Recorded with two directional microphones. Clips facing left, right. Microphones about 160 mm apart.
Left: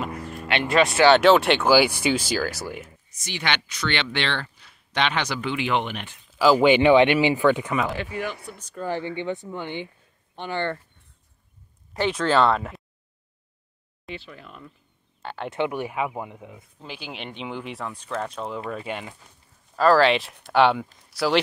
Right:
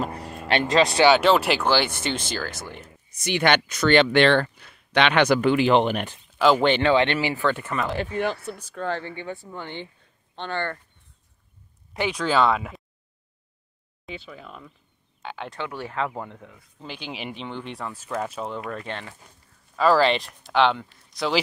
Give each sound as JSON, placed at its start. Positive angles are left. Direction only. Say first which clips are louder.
{"t": 0.0, "sound": "a sound", "louder": "right 1 dB", "side_deg": -35}
{"t": 0.5, "sound": "speech", "louder": "right 1 dB", "side_deg": -35}
{"t": 1.1, "sound": "speech", "louder": "left 3 dB", "side_deg": 0}
{"t": 3.3, "sound": "speech", "louder": "right 7 dB", "side_deg": -50}
{"t": 6.3, "sound": "speech", "louder": "left 2 dB", "side_deg": 5}
{"t": 11.9, "sound": "speech", "louder": "left 2 dB", "side_deg": 0}
{"t": 14.0, "sound": "speech", "louder": "even", "side_deg": 0}
{"t": 15.5, "sound": "speech", "louder": "left 6 dB", "side_deg": 20}
{"t": 16.8, "sound": "speech", "louder": "right 2 dB", "side_deg": 5}
{"t": 18.7, "sound": "speech", "louder": "left 2 dB", "side_deg": 10}
{"t": 19.7, "sound": "speech", "louder": "left 1 dB", "side_deg": 0}